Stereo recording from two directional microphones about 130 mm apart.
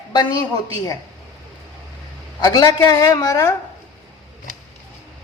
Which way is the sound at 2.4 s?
30° left (ahead or behind).